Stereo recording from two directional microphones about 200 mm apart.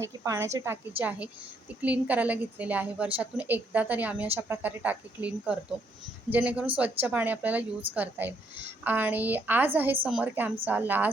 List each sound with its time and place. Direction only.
0.0 s a woman's voice: 15° right (ahead or behind)